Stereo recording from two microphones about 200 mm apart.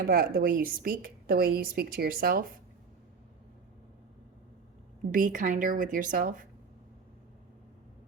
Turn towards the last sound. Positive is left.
turn(degrees=-45)  # may be behind; listen again after turning